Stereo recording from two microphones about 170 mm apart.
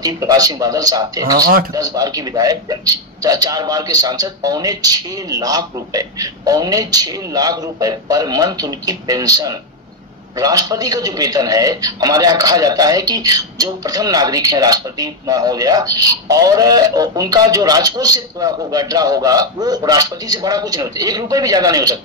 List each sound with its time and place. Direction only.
0.0 s a man's voice: 20° right (ahead or behind)